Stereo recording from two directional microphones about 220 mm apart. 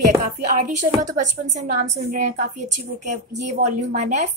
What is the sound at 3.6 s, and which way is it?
Speech, 35° right (ahead or behind).